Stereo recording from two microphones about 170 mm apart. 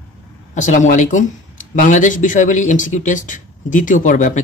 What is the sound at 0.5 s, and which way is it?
Speech, 45° left (ahead or behind).